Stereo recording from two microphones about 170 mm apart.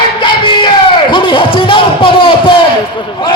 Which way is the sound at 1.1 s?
30° left (ahead or behind).